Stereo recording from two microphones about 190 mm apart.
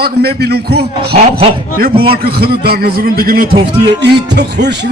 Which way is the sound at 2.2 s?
55° right (ahead or behind).